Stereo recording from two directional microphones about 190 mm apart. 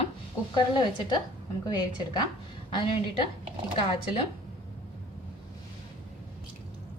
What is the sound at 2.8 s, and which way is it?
Speech, 25° left (ahead or behind).